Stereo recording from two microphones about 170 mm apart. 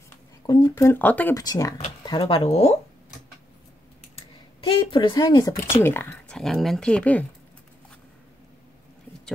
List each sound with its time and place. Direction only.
0.5 s speech: 25° left (ahead or behind)
1.4 s speech: 20° left (ahead or behind)
4.1 s a sound: 30° left (ahead or behind)
5.8 s speech: 15° left (ahead or behind)
6.3 s speech: centre (ahead or behind)